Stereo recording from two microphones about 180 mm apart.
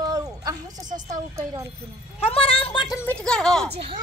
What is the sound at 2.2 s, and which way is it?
Speech, 30° left (ahead or behind).